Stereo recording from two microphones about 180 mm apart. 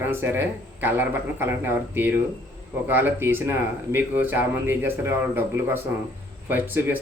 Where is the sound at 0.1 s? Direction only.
10° right (ahead or behind).